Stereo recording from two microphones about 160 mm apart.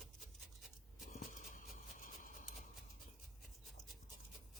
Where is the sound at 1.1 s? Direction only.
50° left (ahead or behind).